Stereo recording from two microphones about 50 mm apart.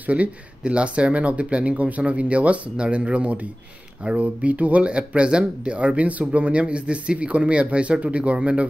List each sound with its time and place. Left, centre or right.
0.0 s speech: right